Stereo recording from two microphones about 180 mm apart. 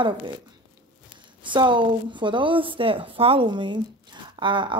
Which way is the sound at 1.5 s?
25° right (ahead or behind).